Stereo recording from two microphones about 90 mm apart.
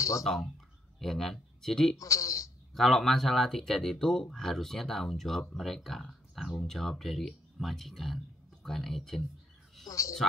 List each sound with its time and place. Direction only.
0.2 s speech: 5° left (ahead or behind)
2.0 s speech: 35° left (ahead or behind)
2.7 s speech: centre (ahead or behind)
9.8 s speech: 35° left (ahead or behind)